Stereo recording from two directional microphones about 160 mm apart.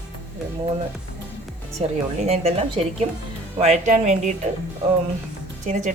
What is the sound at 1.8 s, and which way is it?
Speech, 40° right (ahead or behind).